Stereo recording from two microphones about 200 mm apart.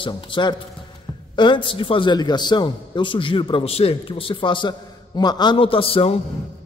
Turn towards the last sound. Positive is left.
turn(degrees=30)  # may be behind; listen again after turning